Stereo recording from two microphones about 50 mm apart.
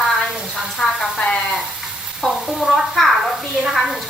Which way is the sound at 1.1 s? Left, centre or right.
Left.